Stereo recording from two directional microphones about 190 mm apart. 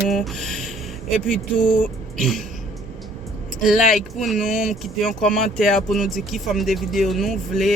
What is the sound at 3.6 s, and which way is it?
Speech, centre (ahead or behind).